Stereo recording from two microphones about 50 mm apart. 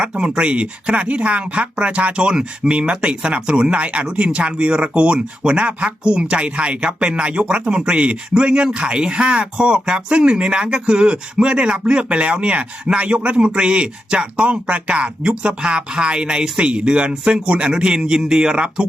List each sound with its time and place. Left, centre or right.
0.0 s speech: centre